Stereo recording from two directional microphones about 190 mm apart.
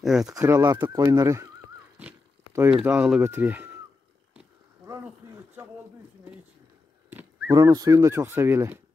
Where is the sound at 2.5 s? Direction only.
10° right (ahead or behind).